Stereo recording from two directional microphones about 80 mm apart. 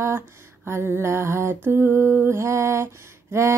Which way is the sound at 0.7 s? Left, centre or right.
Right.